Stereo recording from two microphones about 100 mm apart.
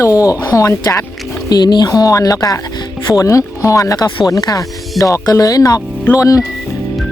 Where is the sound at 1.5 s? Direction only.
45° left (ahead or behind).